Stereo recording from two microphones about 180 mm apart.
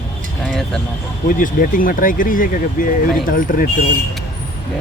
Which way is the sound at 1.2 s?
50° left (ahead or behind).